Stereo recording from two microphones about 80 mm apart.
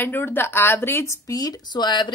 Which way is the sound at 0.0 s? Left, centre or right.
Left.